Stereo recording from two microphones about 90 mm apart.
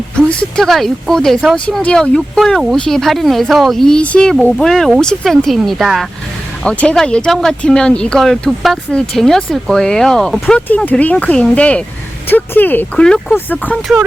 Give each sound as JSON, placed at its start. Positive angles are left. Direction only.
{"t": 0.2, "sound": "speech", "side_deg": 10}
{"t": 6.7, "sound": "speech", "side_deg": 10}
{"t": 13.0, "sound": "speech", "side_deg": 10}